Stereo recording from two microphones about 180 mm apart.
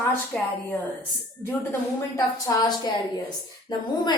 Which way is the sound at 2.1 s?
20° left (ahead or behind).